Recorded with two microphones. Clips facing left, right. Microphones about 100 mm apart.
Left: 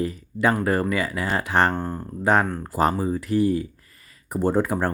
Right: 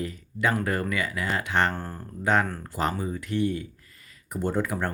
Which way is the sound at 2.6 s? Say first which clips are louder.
Left 6 dB; 35° left (ahead or behind).